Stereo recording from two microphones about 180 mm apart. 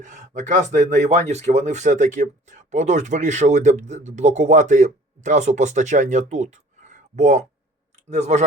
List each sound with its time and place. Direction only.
0.0 s speech: 45° right (ahead or behind)